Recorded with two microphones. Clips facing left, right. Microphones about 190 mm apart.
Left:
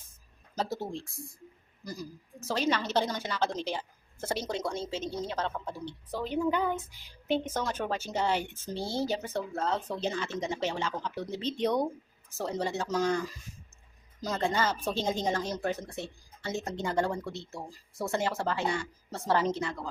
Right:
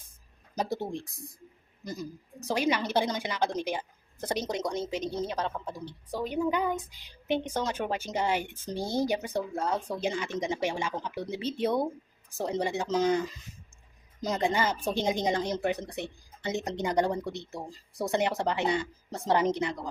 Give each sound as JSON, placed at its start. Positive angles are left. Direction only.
{"t": 0.5, "sound": "a woman's voice", "side_deg": -15}